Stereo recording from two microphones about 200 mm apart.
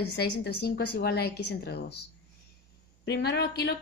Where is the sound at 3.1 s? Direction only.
55° left (ahead or behind).